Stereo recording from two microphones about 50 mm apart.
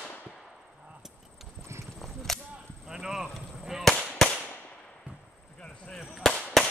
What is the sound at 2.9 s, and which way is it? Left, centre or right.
Clip-clop, centre.